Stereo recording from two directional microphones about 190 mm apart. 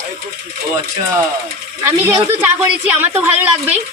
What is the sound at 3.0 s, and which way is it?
Speech, 10° right (ahead or behind).